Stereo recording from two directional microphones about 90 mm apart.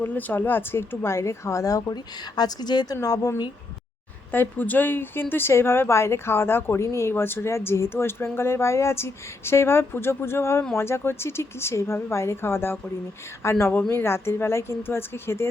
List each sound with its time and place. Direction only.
0.0 s speech: 20° left (ahead or behind); by 3.3 s 40° left (ahead or behind)
4.3 s a woman's voice: 20° left (ahead or behind)